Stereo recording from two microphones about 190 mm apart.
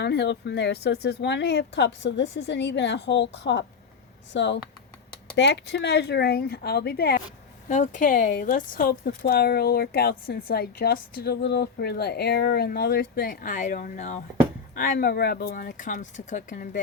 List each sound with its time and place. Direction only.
0.0 s speech: 65° left (ahead or behind)
7.7 s speech: 40° left (ahead or behind)
14.8 s speech: 55° left (ahead or behind)